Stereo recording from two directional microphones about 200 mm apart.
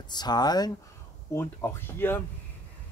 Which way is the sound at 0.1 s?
20° left (ahead or behind).